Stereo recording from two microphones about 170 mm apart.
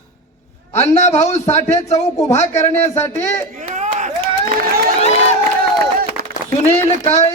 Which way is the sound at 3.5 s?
45° right (ahead or behind).